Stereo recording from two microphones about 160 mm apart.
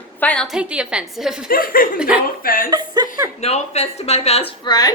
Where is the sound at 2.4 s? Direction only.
65° left (ahead or behind).